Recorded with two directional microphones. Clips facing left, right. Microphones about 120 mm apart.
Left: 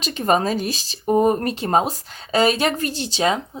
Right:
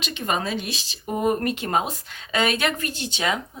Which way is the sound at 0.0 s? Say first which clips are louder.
Left 7 dB; 40° left (ahead or behind).